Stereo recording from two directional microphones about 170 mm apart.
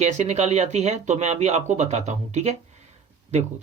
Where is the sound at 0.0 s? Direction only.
40° right (ahead or behind).